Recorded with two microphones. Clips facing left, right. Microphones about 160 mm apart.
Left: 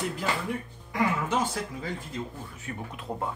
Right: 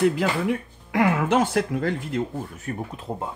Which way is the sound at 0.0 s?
90° right.